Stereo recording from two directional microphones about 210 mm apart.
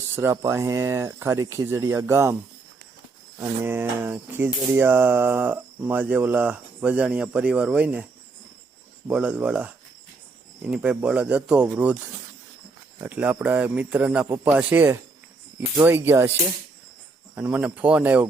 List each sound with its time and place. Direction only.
0.2 s cricket: 15° right (ahead or behind)
3.3 s cricket: 10° right (ahead or behind)
9.0 s speech: 5° right (ahead or behind)
13.0 s cricket: 10° right (ahead or behind)
17.3 s cricket: 5° right (ahead or behind)